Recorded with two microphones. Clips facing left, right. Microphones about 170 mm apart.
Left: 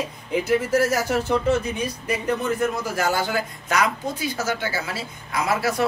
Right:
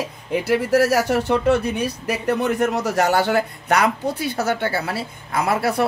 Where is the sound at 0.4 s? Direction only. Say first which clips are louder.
Right 3 dB; 70° right (ahead or behind).